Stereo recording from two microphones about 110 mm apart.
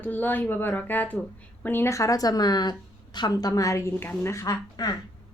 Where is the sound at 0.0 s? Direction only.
15° left (ahead or behind).